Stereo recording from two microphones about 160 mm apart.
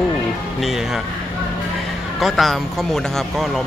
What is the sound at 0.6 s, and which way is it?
Speech, centre (ahead or behind).